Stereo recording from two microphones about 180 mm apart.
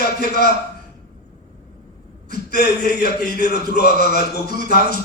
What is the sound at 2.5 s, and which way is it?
A man's voice, 65° left (ahead or behind).